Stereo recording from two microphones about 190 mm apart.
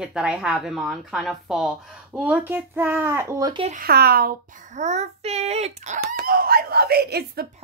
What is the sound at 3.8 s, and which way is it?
A child's voice, 55° right (ahead or behind).